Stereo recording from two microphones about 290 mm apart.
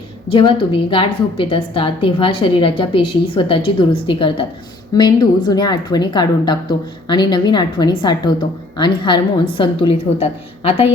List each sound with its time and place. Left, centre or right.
0.3 s a woman's voice: centre